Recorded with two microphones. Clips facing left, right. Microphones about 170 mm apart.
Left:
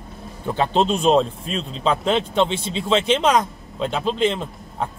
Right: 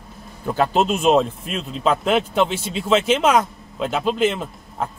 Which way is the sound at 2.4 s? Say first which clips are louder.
Even; 25° left (ahead or behind).